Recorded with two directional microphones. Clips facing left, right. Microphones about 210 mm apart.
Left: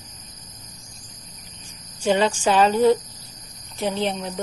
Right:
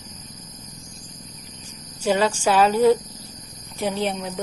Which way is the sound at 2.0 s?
5° right (ahead or behind).